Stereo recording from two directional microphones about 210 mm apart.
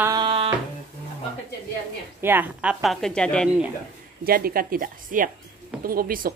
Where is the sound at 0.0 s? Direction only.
20° right (ahead or behind).